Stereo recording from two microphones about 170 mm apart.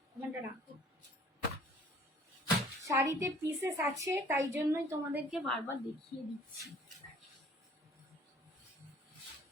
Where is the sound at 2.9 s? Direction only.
15° right (ahead or behind); by 5.6 s centre (ahead or behind).